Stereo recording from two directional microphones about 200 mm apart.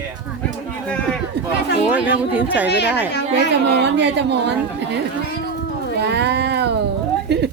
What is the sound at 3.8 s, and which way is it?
A woman's voice, 60° right (ahead or behind).